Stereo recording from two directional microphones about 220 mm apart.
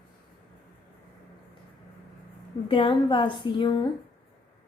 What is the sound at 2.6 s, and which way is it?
A woman's voice, 20° left (ahead or behind).